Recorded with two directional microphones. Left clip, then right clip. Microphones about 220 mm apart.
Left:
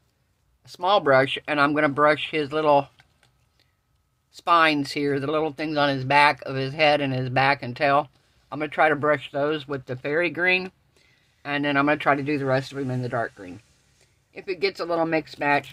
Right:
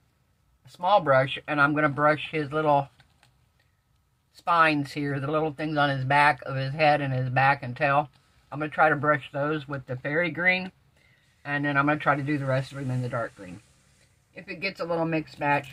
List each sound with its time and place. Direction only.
0.6 s speech: 50° left (ahead or behind)
4.4 s speech: 50° left (ahead or behind)